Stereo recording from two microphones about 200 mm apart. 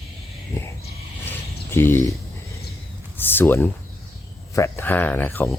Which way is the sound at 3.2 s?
10° left (ahead or behind).